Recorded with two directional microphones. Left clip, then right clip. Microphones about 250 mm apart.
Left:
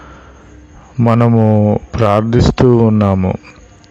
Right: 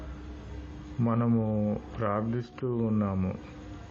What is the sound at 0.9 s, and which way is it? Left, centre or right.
A man's voice, left.